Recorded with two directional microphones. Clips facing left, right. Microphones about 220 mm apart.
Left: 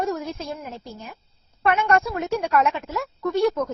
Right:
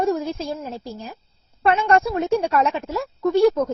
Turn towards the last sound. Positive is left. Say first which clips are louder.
# right 5 dB
turn(degrees=-30)  # may be behind; listen again after turning